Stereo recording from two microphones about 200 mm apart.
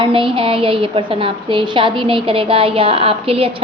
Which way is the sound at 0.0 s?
25° right (ahead or behind).